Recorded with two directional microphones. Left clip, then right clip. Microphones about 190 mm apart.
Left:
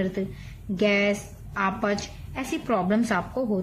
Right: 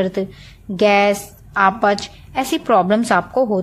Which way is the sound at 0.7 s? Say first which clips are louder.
Right 9 dB; 65° right (ahead or behind).